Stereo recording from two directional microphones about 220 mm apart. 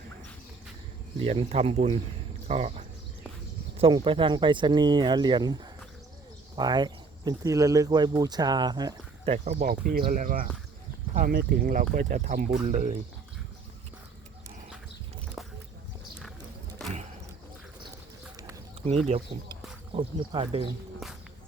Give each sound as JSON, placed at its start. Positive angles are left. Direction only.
{"t": 1.2, "sound": "speech", "side_deg": -25}
{"t": 9.3, "sound": "speech", "side_deg": -30}
{"t": 9.6, "sound": "speech", "side_deg": -40}
{"t": 15.4, "sound": "boat", "side_deg": 0}
{"t": 16.8, "sound": "a sound", "side_deg": 0}
{"t": 19.0, "sound": "speech", "side_deg": -25}
{"t": 21.0, "sound": "a sound", "side_deg": 0}